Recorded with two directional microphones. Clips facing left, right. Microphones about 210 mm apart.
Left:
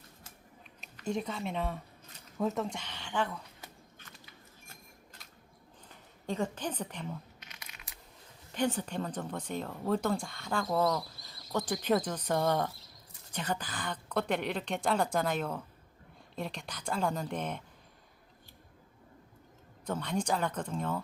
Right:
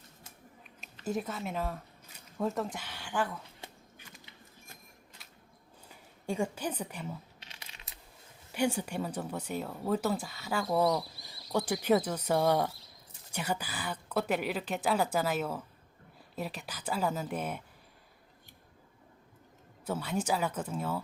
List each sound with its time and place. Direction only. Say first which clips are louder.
1.0 s speech: even; 5° right (ahead or behind)
3.6 s a sound: right 2 dB; 25° right (ahead or behind)
4.0 s a sound: right 2 dB; 10° right (ahead or behind)
5.9 s a woman's voice: right 1 dB; 10° right (ahead or behind)
7.3 s crumpling: even; 30° right (ahead or behind)
8.5 s speech: right 1 dB; 10° right (ahead or behind)
19.8 s speech: even; 5° right (ahead or behind)